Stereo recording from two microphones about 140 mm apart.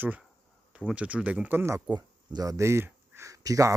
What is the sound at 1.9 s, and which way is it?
Speech, 30° right (ahead or behind).